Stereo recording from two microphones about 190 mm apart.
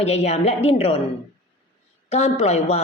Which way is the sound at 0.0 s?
35° left (ahead or behind).